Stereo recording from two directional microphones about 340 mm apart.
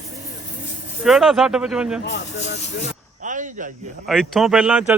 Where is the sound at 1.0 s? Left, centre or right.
Centre.